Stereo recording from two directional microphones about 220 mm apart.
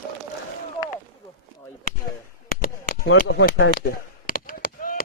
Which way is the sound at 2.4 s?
40° left (ahead or behind).